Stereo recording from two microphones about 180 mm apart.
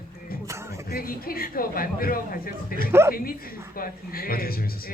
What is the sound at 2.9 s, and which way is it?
Speech, 15° right (ahead or behind).